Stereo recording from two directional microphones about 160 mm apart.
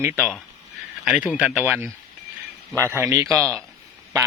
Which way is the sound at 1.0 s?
5° right (ahead or behind).